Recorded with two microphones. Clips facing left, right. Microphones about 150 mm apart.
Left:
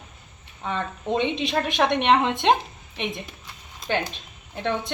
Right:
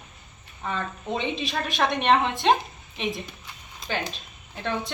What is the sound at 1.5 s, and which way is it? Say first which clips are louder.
Speech: left 2 dB; 20° left (ahead or behind).